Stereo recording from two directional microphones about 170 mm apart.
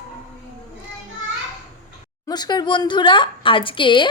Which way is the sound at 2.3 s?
25° left (ahead or behind).